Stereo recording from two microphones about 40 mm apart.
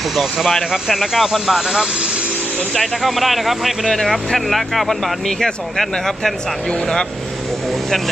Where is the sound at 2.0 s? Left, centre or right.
Right.